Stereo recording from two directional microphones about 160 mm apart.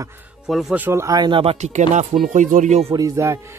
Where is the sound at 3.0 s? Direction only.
20° right (ahead or behind).